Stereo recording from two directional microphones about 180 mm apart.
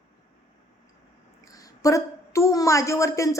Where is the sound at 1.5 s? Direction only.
20° left (ahead or behind).